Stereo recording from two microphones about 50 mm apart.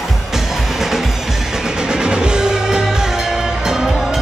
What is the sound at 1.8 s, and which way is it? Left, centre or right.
Music, centre.